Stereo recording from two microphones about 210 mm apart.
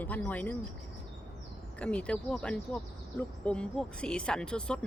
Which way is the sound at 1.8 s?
5° left (ahead or behind).